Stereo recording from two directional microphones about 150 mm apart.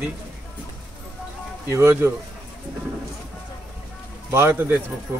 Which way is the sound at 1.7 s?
15° right (ahead or behind).